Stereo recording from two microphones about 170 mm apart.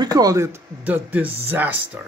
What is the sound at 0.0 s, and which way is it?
A man's voice, 20° right (ahead or behind).